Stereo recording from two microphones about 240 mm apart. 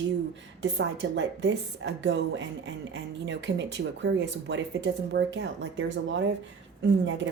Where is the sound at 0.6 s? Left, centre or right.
Right.